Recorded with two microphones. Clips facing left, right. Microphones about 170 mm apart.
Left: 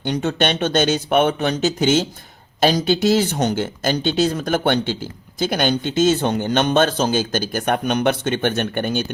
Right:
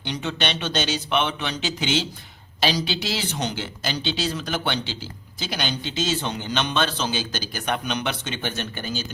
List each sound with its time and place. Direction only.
0.0 s a man's voice: 45° left (ahead or behind)